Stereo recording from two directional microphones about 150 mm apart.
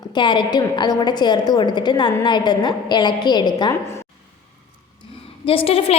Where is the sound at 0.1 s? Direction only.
30° left (ahead or behind).